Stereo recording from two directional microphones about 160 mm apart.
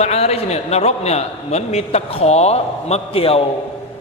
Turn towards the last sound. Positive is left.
turn(degrees=35)  # may be behind; listen again after turning